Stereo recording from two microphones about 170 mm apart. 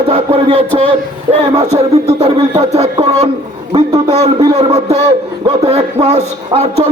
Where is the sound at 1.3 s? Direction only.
35° right (ahead or behind).